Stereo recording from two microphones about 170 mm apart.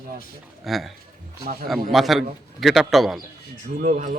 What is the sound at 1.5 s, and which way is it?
Speech, 50° right (ahead or behind).